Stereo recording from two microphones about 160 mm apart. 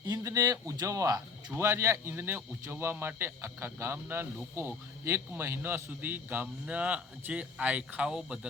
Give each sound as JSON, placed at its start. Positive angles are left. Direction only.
{"t": 0.0, "sound": "speech", "side_deg": -20}